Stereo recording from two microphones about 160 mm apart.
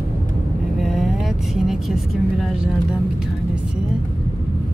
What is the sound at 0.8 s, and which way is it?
Vehicle, centre (ahead or behind).